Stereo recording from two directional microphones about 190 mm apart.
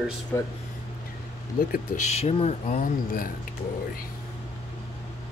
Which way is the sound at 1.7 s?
35° left (ahead or behind).